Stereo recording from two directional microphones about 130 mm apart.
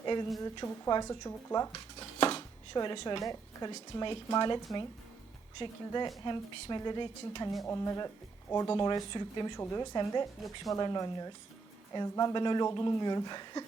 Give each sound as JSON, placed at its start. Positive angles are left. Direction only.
{"t": 0.0, "sound": "a sound", "side_deg": 35}
{"t": 0.4, "sound": "speech", "side_deg": 30}
{"t": 1.3, "sound": "speech", "side_deg": 25}
{"t": 2.0, "sound": "a sound", "side_deg": 50}
{"t": 2.7, "sound": "speech", "side_deg": 35}
{"t": 3.7, "sound": "speech", "side_deg": 40}
{"t": 7.7, "sound": "speech", "side_deg": 20}